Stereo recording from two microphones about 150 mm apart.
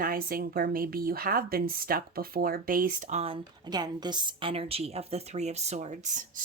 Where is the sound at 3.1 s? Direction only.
35° right (ahead or behind); by 6.2 s 55° right (ahead or behind).